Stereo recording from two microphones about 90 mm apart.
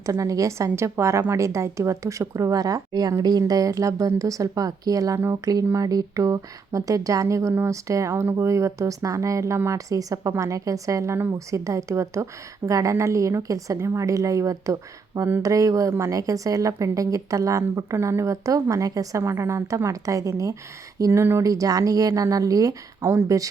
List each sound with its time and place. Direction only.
0.0 s speech: 40° right (ahead or behind)
19.2 s speech: 30° right (ahead or behind)
21.1 s speech: 25° right (ahead or behind)
23.0 s speech: 25° right (ahead or behind)